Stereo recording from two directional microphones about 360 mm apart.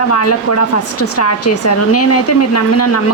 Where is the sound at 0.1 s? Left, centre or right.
Left.